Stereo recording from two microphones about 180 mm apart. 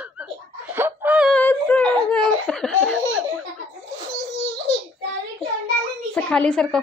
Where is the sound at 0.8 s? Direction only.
10° right (ahead or behind).